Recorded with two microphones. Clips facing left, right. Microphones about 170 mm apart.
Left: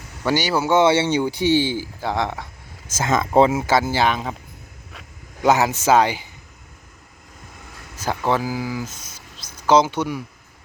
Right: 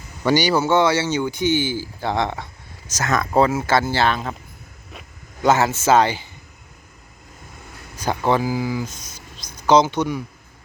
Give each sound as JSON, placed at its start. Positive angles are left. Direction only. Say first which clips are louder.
{"t": 0.3, "sound": "speech", "louder": "right 2 dB", "side_deg": 5}
{"t": 0.8, "sound": "speech", "louder": "left 2 dB", "side_deg": 25}
{"t": 2.0, "sound": "speech", "louder": "right 3 dB", "side_deg": 5}
{"t": 3.0, "sound": "speech", "louder": "left 2 dB", "side_deg": 25}
{"t": 5.4, "sound": "speech", "louder": "even", "side_deg": 10}
{"t": 7.9, "sound": "speech", "louder": "right 2 dB", "side_deg": 0}